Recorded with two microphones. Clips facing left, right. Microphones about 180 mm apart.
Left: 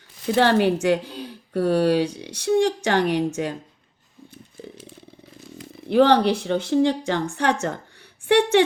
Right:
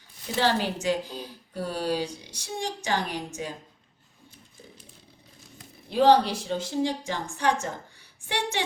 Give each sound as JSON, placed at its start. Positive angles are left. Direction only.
{"t": 0.3, "sound": "a woman's voice", "side_deg": 60}
{"t": 4.6, "sound": "motorcycle", "side_deg": 65}
{"t": 5.5, "sound": "a woman's voice", "side_deg": 65}